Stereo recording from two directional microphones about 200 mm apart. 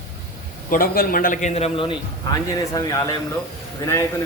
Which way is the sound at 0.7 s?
45° left (ahead or behind).